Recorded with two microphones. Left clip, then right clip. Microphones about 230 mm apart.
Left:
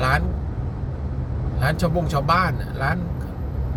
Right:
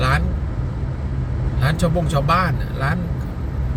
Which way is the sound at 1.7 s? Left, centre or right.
Centre.